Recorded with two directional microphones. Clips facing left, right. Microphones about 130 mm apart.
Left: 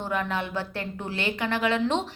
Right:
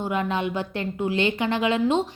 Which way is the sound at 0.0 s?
20° right (ahead or behind).